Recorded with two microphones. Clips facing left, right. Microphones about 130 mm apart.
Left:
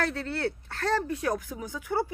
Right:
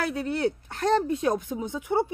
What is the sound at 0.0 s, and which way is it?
Speech, 15° right (ahead or behind).